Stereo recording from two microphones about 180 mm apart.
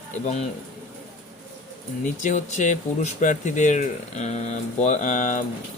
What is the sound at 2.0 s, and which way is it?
Speech, 45° left (ahead or behind).